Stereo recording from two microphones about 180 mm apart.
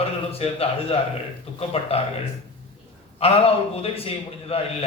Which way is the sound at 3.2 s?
35° left (ahead or behind).